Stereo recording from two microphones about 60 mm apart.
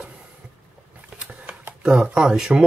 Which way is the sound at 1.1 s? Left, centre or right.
Centre.